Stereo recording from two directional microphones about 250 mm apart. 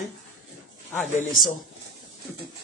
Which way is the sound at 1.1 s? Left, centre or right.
Centre.